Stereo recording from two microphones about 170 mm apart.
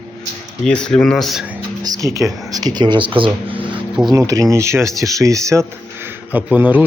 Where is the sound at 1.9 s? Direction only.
20° right (ahead or behind).